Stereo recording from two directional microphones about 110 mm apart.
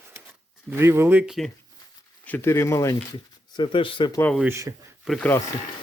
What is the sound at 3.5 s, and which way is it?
Speech, 45° left (ahead or behind).